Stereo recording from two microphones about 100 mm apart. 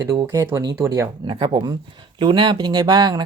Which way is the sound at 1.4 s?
55° right (ahead or behind).